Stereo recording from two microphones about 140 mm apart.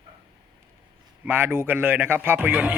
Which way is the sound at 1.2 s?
15° right (ahead or behind).